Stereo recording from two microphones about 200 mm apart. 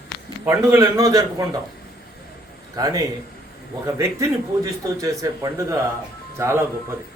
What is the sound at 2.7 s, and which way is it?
A man's voice, 15° right (ahead or behind).